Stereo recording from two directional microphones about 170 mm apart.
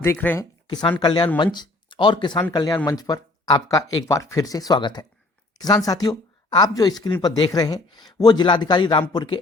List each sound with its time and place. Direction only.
0.0 s speech: 10° left (ahead or behind)
0.7 s speech: 25° left (ahead or behind)